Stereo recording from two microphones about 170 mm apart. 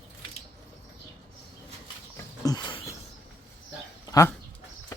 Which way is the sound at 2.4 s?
25° left (ahead or behind).